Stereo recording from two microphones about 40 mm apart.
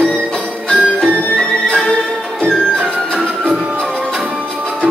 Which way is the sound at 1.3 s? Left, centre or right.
Left.